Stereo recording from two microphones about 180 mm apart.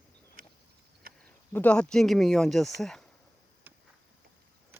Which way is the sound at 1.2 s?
10° left (ahead or behind).